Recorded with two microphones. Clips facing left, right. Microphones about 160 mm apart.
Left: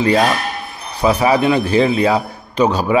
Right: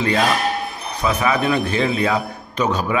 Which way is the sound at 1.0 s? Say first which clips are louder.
Left 6 dB; 30° left (ahead or behind).